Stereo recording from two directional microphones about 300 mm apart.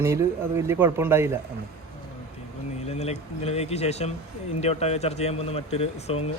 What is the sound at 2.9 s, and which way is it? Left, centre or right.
Speech, left.